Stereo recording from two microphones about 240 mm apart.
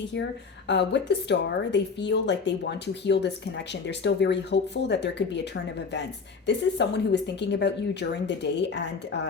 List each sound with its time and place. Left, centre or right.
0.7 s speech: left